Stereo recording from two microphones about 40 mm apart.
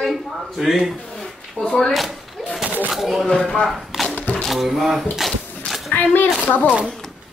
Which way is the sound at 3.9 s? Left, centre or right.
Centre.